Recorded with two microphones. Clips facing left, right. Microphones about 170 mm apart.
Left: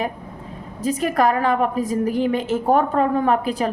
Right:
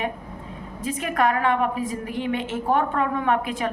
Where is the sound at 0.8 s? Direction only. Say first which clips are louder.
Left 4 dB; 40° left (ahead or behind).